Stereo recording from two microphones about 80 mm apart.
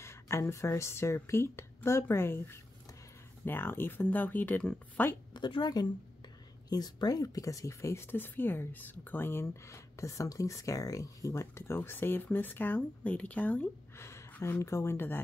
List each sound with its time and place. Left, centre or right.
0.0 s speech: left
5.3 s a woman's voice: left
8.1 s speech: left
13.9 s a sound: left
14.4 s speech: left